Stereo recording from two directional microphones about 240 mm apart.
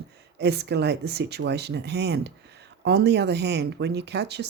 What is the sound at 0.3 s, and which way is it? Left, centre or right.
Speech, right.